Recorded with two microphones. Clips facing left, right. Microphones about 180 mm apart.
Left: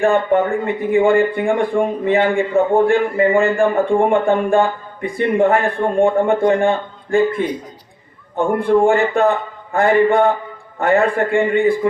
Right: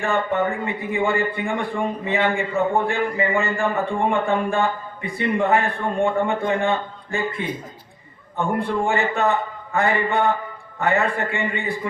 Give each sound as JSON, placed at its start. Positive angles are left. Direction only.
{"t": 0.6, "sound": "a man's voice", "side_deg": 55}